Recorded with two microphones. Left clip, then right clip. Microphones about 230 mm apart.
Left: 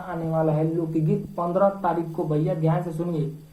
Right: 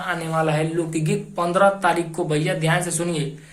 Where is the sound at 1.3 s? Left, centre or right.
Right.